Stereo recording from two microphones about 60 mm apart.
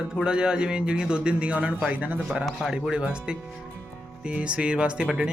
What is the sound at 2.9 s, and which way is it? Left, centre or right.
A man's voice, centre.